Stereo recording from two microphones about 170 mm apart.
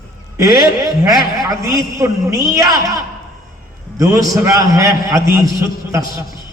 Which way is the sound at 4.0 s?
20° right (ahead or behind).